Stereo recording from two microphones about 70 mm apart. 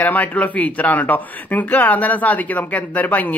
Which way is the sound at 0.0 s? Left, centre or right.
Left.